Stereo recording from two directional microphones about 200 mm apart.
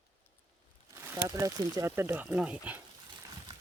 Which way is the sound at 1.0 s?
15° right (ahead or behind).